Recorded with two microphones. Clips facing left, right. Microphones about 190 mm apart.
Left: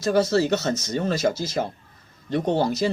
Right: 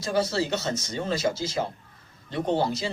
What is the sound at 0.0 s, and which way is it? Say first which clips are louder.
Speech: left 6 dB; 45° left (ahead or behind).